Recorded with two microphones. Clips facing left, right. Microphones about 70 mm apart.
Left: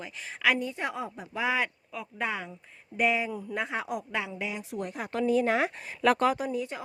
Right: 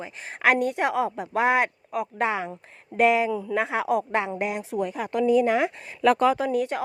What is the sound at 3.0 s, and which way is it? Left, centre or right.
Speech, right.